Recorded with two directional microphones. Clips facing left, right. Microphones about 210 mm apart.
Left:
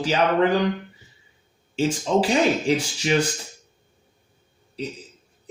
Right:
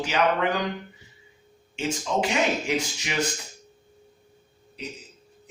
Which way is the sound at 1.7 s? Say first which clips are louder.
Left 6 dB; 35° left (ahead or behind).